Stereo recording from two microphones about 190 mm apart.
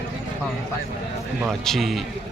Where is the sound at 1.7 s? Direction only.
Centre (ahead or behind).